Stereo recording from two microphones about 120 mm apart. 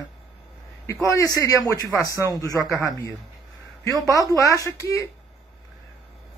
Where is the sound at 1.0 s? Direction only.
30° left (ahead or behind).